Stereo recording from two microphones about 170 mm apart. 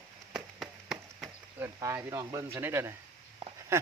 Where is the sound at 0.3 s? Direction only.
Centre (ahead or behind).